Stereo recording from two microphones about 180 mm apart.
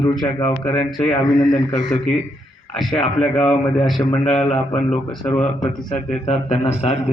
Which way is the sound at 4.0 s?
20° left (ahead or behind).